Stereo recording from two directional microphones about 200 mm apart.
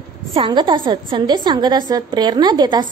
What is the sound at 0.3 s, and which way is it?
A woman's voice, 25° right (ahead or behind).